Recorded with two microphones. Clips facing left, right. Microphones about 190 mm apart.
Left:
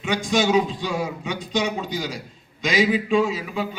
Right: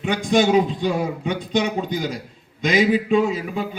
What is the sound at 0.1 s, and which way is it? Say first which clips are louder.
A man's voice: right 3 dB; 55° right (ahead or behind).